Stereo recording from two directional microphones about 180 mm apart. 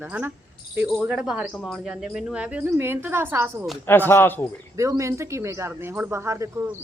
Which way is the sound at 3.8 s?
10° left (ahead or behind).